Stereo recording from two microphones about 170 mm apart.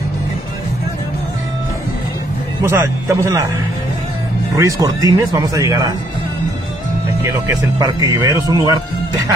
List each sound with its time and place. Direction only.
2.6 s speech: 15° right (ahead or behind)
4.6 s speech: 20° right (ahead or behind)
7.2 s speech: 20° right (ahead or behind)